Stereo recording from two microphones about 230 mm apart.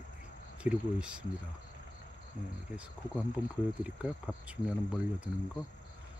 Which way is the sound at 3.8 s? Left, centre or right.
Centre.